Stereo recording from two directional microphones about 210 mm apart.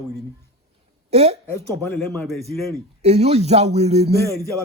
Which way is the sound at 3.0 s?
30° right (ahead or behind).